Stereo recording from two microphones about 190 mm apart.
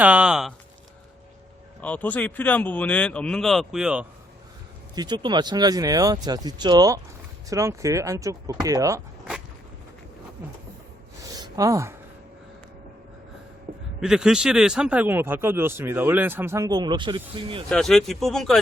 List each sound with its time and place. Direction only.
0.0 s speech: 5° right (ahead or behind)
1.8 s speech: 10° left (ahead or behind)
4.9 s speech: 25° right (ahead or behind)
11.2 s a sound: 20° right (ahead or behind)
14.0 s speech: 5° right (ahead or behind); by 17.6 s 25° right (ahead or behind)
17.7 s speech: 5° left (ahead or behind)